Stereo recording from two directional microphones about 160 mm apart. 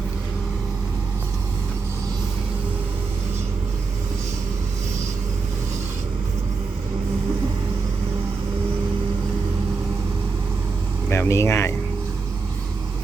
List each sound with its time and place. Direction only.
11.1 s vehicle: 15° left (ahead or behind)